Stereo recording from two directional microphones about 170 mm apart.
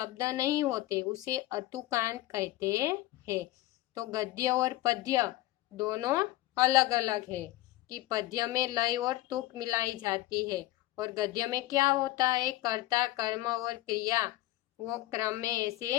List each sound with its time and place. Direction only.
0.0 s speech: 20° right (ahead or behind)